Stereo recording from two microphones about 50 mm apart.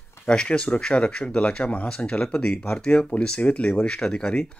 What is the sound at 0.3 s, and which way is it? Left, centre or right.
Speech, centre.